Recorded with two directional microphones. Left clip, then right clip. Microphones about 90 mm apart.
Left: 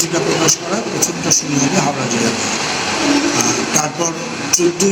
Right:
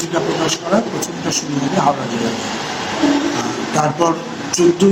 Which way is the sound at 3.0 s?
30° right (ahead or behind).